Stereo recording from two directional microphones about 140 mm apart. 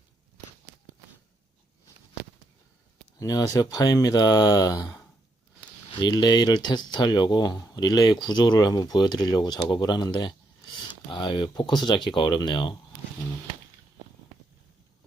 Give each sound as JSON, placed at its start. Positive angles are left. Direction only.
{"t": 3.2, "sound": "speech", "side_deg": 25}